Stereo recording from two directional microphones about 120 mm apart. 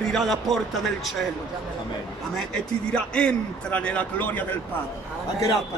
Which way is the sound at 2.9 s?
10° left (ahead or behind).